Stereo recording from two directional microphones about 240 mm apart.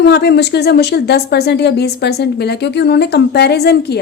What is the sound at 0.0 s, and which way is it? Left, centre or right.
A woman's voice, left.